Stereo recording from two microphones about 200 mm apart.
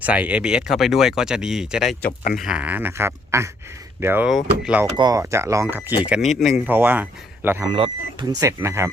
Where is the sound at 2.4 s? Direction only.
5° right (ahead or behind).